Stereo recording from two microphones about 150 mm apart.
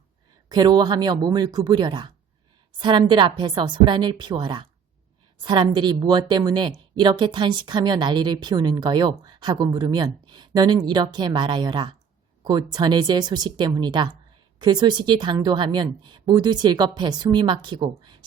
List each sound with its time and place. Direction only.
0.4 s a woman's voice: 25° right (ahead or behind)